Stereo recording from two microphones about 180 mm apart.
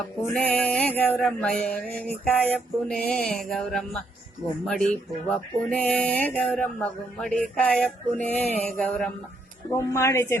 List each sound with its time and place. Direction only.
0.3 s mantra: 10° left (ahead or behind)
4.6 s speech: 5° left (ahead or behind)
9.7 s speech: 15° left (ahead or behind)